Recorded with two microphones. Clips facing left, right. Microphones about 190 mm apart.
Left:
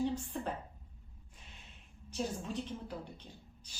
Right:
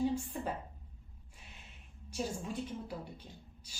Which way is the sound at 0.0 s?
10° right (ahead or behind).